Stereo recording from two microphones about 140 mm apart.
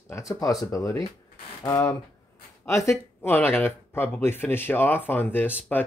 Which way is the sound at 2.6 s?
20° left (ahead or behind).